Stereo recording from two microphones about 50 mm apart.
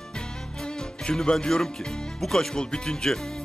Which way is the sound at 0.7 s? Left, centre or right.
Centre.